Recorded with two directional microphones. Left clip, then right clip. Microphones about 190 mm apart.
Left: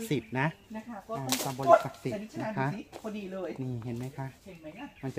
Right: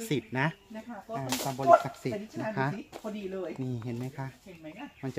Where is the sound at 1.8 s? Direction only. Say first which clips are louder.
Right 1 dB; 5° right (ahead or behind).